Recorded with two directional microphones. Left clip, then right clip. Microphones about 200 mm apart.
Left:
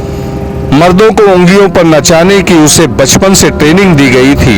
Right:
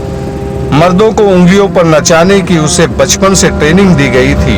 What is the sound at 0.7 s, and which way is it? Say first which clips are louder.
Speech: left 2 dB; 30° left (ahead or behind).